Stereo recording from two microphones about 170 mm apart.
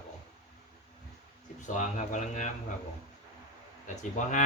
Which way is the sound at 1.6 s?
45° left (ahead or behind).